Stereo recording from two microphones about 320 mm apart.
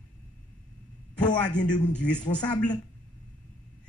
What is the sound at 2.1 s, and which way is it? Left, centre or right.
Speech, centre.